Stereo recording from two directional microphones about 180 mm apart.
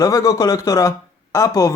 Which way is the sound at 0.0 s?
20° left (ahead or behind).